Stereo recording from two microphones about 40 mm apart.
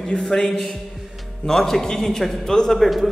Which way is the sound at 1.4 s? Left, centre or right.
Centre.